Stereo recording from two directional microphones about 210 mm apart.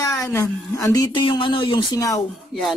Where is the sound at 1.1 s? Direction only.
25° left (ahead or behind).